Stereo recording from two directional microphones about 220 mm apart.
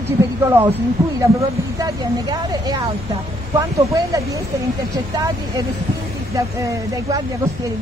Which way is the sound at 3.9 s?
15° right (ahead or behind).